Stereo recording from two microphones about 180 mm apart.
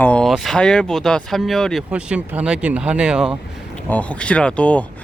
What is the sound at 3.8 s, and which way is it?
Speech, 10° left (ahead or behind).